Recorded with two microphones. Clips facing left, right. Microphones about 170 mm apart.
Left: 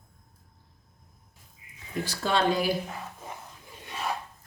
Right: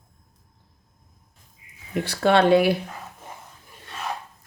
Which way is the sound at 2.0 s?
65° right (ahead or behind).